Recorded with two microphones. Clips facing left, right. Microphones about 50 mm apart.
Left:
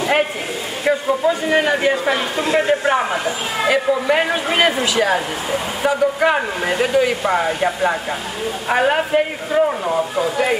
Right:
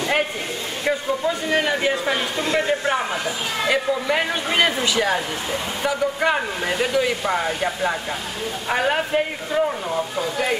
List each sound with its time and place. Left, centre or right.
0.0 s a man's voice: centre